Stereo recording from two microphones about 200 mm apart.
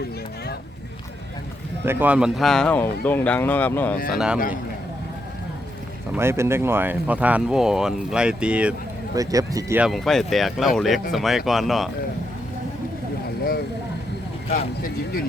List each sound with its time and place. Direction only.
1.8 s speech: 10° right (ahead or behind); by 3.9 s 10° left (ahead or behind)
4.1 s speech: 5° right (ahead or behind)
6.1 s speech: 10° right (ahead or behind)
9.1 s speech: 15° right (ahead or behind); by 11.9 s centre (ahead or behind)
14.4 s speech: 30° left (ahead or behind)